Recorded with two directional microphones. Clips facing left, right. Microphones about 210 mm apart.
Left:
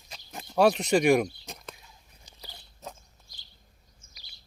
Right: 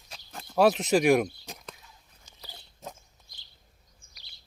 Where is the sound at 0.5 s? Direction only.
Centre (ahead or behind).